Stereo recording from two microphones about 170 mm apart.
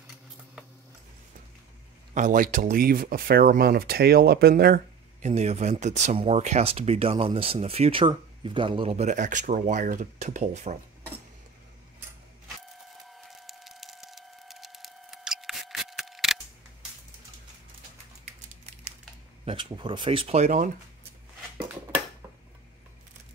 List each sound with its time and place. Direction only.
2.1 s speech: 50° right (ahead or behind); by 4.8 s 65° right (ahead or behind)
5.2 s speech: 40° right (ahead or behind)
13.0 s a sound: centre (ahead or behind)
19.4 s speech: 30° right (ahead or behind); by 20.7 s 45° right (ahead or behind)